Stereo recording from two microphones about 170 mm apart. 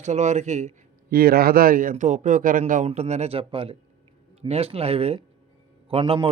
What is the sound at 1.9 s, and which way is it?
A man's voice, 45° right (ahead or behind).